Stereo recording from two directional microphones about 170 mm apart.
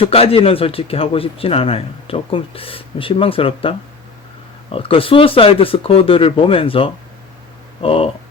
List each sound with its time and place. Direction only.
0.0 s a man's voice: 35° left (ahead or behind)